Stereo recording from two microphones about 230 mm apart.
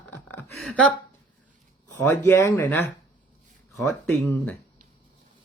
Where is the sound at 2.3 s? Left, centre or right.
Centre.